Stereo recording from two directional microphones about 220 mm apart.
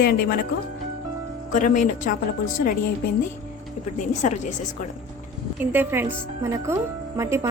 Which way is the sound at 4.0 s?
35° left (ahead or behind).